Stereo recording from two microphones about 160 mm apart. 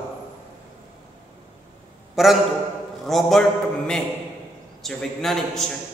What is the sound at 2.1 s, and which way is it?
A man's voice, centre (ahead or behind).